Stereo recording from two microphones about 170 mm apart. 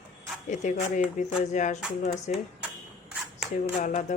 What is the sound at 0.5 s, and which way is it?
Speech, 45° left (ahead or behind).